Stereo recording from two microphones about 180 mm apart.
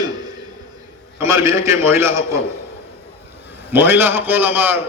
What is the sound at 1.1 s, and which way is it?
A man's voice, 15° right (ahead or behind).